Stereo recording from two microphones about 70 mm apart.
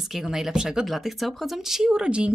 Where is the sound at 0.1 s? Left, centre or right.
Centre.